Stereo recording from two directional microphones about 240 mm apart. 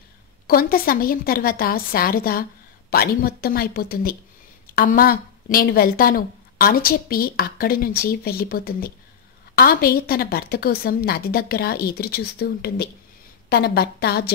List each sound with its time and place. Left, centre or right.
0.5 s a woman's voice: left